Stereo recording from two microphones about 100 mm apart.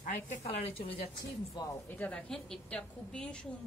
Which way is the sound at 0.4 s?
70° left (ahead or behind).